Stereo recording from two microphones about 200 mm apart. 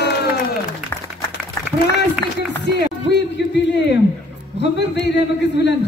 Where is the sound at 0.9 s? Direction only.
10° left (ahead or behind).